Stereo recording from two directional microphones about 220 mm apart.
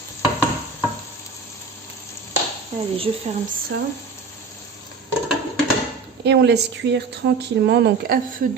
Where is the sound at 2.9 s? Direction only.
25° right (ahead or behind).